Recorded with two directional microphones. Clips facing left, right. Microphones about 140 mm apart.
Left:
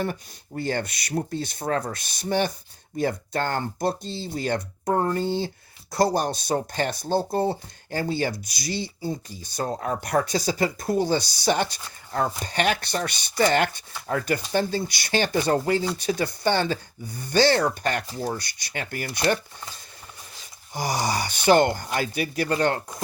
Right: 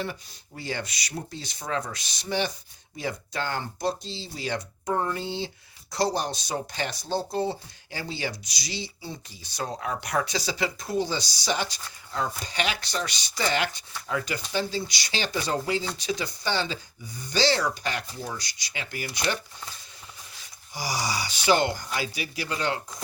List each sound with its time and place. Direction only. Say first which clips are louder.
0.0 s speech: left 5 dB; 50° left (ahead or behind)
18.1 s speech: left 7 dB; 35° left (ahead or behind)
18.3 s speech: left 4 dB; 55° left (ahead or behind)
20.7 s speech: left 5 dB; 50° left (ahead or behind)